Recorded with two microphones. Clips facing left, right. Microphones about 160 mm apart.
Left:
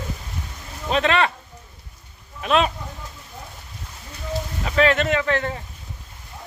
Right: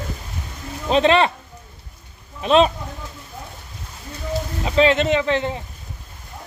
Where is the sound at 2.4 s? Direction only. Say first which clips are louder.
Right 5 dB; 30° right (ahead or behind).